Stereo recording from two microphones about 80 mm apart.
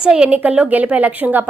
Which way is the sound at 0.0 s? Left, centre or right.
Centre.